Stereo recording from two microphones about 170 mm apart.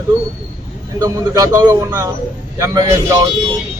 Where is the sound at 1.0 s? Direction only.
20° right (ahead or behind).